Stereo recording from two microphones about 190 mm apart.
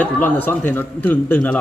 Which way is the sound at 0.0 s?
10° left (ahead or behind).